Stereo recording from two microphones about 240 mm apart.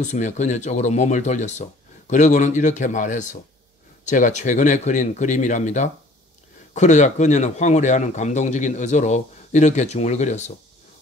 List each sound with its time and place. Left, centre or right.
0.0 s speech: left